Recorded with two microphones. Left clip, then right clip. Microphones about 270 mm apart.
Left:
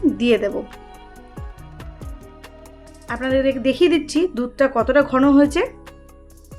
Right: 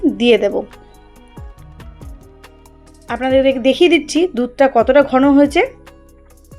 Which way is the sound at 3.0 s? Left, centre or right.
Centre.